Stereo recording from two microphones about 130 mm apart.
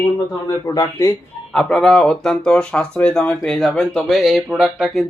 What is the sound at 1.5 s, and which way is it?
Speech, 5° left (ahead or behind).